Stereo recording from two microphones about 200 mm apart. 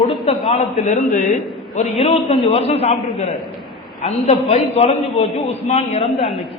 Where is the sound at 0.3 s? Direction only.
30° left (ahead or behind).